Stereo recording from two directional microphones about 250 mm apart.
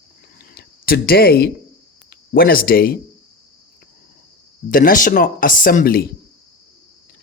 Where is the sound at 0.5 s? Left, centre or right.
Left.